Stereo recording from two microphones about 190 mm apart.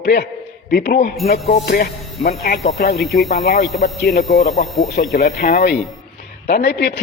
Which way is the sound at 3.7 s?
50° left (ahead or behind).